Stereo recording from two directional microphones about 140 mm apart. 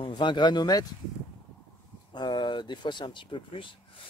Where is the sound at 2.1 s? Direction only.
30° left (ahead or behind).